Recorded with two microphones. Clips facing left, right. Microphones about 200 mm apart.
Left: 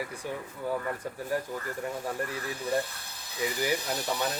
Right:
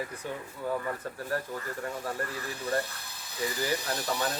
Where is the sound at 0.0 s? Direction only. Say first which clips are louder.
Left 1 dB; 10° left (ahead or behind).